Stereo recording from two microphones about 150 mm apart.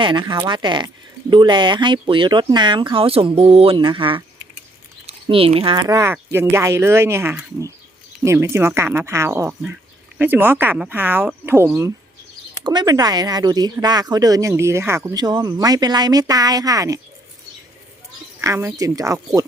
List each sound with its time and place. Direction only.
0.0 s speech: 30° right (ahead or behind)
5.3 s speech: 40° right (ahead or behind)
5.9 s speech: 15° right (ahead or behind)
12.6 s speech: 30° right (ahead or behind)
18.3 s speech: 20° right (ahead or behind)